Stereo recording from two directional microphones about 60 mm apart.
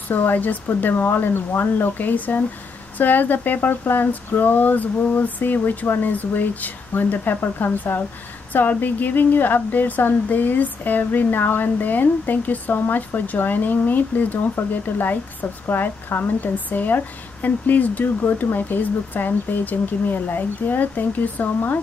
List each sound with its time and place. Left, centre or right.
0.1 s speech: left